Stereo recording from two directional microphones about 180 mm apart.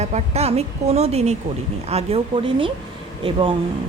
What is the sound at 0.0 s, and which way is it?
A woman's voice, 35° right (ahead or behind).